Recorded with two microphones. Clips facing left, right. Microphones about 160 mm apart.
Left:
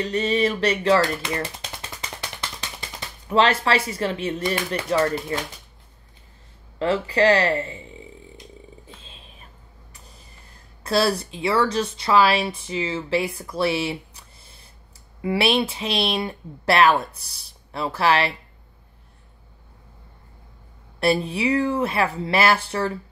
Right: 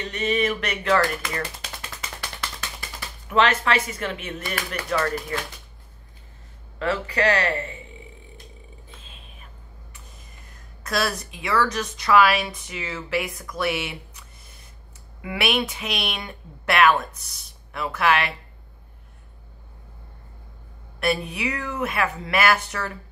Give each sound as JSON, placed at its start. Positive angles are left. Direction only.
{"t": 0.0, "sound": "speech", "side_deg": 35}
{"t": 6.8, "sound": "speech", "side_deg": 30}
{"t": 10.8, "sound": "speech", "side_deg": 30}
{"t": 21.0, "sound": "speech", "side_deg": 30}